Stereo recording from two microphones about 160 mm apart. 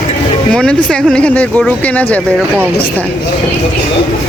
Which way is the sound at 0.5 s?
5° left (ahead or behind).